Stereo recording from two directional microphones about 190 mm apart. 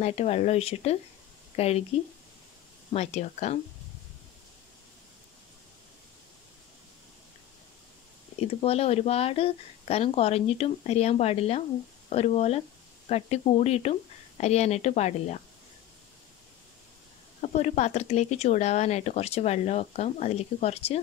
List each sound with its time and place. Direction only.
0.0 s speech: 35° left (ahead or behind)
2.9 s speech: 35° left (ahead or behind)
8.4 s speech: 30° left (ahead or behind)
17.4 s speech: 35° left (ahead or behind)